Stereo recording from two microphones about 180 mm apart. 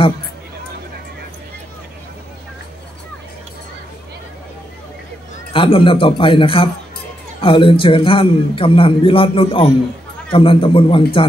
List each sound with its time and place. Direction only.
5.5 s a man's voice: 30° left (ahead or behind)